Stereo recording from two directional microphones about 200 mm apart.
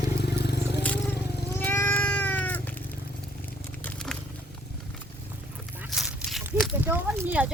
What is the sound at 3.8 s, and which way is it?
Biting, 5° left (ahead or behind).